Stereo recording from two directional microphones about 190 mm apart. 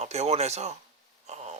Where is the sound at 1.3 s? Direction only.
35° right (ahead or behind).